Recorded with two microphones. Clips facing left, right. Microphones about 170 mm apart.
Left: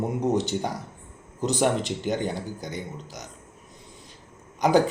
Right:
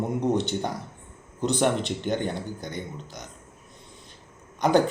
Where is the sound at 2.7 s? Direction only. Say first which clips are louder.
Even; 55° right (ahead or behind).